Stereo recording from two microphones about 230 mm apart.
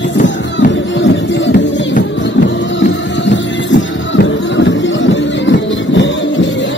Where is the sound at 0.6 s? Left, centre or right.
Left.